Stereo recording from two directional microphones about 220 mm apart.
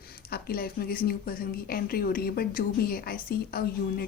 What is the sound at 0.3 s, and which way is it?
Speech, 45° left (ahead or behind).